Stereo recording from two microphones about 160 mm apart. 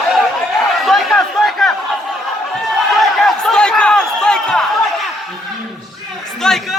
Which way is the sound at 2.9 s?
Centre (ahead or behind).